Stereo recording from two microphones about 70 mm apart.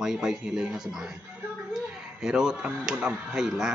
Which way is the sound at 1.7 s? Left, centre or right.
Centre.